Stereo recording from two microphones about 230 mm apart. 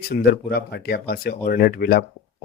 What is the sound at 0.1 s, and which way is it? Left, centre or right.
Speech, left.